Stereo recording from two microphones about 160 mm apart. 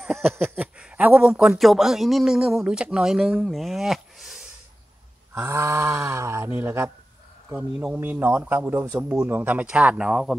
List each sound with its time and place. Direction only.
0.0 s a sound: centre (ahead or behind)
0.4 s a man's voice: 5° right (ahead or behind)
5.3 s a man's voice: 15° right (ahead or behind)